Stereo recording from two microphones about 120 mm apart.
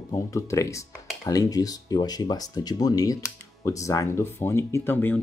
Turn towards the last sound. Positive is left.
turn(degrees=15)  # may be behind; listen again after turning